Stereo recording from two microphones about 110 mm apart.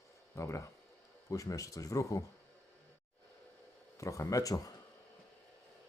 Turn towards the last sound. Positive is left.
turn(degrees=30)  # may be behind; listen again after turning